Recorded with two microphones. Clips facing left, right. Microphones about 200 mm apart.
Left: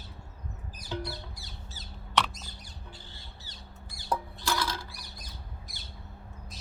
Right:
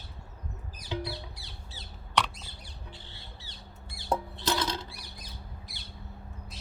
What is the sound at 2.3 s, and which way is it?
Mouse, 45° left (ahead or behind).